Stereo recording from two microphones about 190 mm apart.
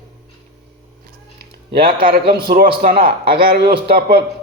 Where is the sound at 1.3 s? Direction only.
55° right (ahead or behind).